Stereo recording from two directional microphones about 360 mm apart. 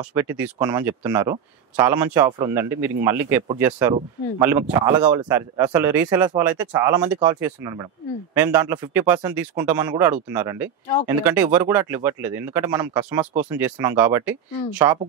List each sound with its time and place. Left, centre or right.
0.1 s speech: centre